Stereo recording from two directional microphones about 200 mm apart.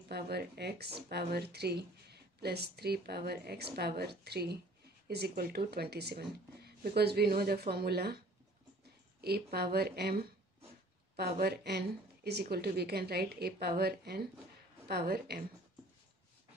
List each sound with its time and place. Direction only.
0.1 s speech: 55° right (ahead or behind)
9.2 s speech: 50° right (ahead or behind)